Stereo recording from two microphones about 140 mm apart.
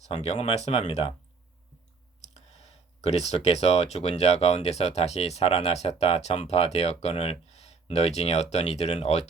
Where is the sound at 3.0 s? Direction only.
50° left (ahead or behind).